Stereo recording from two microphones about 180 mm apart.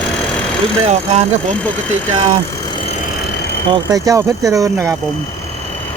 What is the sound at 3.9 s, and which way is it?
Speech, 20° right (ahead or behind).